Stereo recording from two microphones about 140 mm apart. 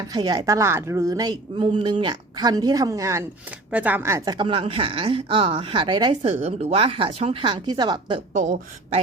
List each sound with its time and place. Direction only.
0.1 s a woman's voice: 30° right (ahead or behind)
3.7 s speech: 10° right (ahead or behind)
4.4 s speech: 40° right (ahead or behind)
6.4 s speech: 50° right (ahead or behind); by 8.2 s 35° right (ahead or behind)
8.3 s speech: 70° right (ahead or behind)